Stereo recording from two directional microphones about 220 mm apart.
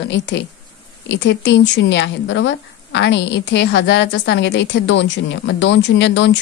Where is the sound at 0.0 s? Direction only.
55° left (ahead or behind).